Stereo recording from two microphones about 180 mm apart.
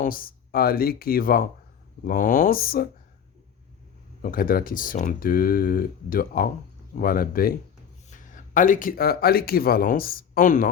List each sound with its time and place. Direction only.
0.0 s speech: 55° left (ahead or behind)
4.2 s speech: 50° left (ahead or behind)